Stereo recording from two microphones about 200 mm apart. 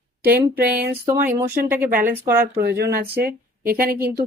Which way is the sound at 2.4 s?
50° right (ahead or behind).